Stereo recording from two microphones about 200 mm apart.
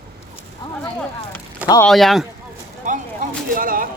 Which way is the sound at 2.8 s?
40° right (ahead or behind).